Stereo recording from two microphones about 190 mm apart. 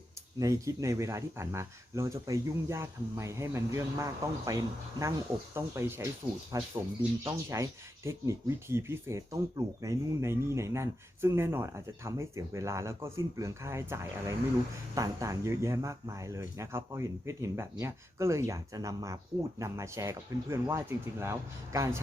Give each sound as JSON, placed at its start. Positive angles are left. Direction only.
{"t": 0.3, "sound": "speech", "side_deg": -15}